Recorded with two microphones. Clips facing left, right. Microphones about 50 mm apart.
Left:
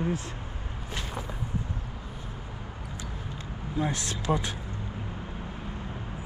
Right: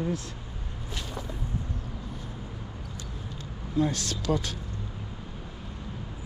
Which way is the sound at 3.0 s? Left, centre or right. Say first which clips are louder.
Left 2 dB; left.